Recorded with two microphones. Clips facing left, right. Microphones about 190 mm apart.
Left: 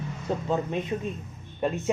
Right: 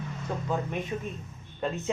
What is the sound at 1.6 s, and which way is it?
Speech, 15° left (ahead or behind).